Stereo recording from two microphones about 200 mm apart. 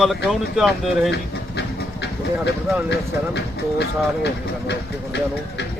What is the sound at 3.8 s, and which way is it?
Speech, 60° left (ahead or behind).